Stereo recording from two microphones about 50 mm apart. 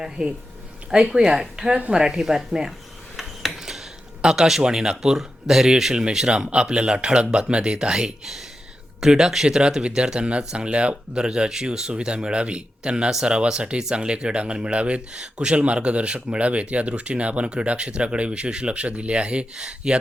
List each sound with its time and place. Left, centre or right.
0.0 s speech: centre
9.6 s speech: centre